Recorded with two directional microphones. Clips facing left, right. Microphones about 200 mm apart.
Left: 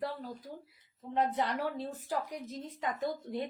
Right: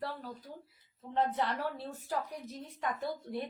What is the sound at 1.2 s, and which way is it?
A woman's voice, 15° left (ahead or behind).